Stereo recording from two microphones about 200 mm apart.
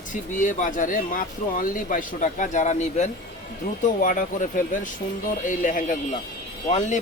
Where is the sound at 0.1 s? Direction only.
40° left (ahead or behind).